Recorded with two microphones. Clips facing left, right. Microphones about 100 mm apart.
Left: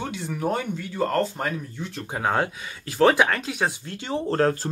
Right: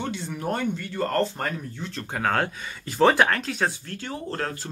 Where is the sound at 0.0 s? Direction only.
5° left (ahead or behind).